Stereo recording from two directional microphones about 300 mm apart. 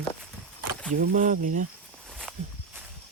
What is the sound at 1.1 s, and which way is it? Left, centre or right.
Speech, right.